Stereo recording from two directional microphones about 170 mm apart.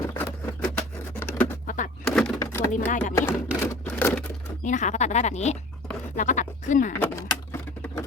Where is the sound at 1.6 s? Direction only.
50° left (ahead or behind).